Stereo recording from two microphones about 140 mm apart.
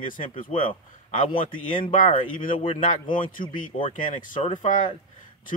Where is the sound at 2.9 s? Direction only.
75° left (ahead or behind).